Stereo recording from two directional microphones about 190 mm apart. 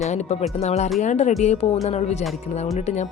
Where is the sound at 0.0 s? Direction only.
35° left (ahead or behind).